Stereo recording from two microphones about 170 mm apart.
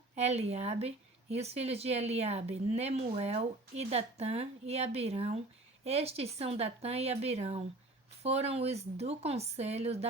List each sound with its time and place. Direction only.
0.2 s speech: 40° right (ahead or behind)